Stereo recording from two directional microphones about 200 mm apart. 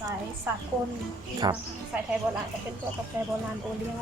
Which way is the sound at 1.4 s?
20° right (ahead or behind).